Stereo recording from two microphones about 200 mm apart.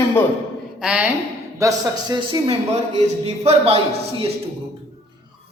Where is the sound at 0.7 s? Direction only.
5° right (ahead or behind).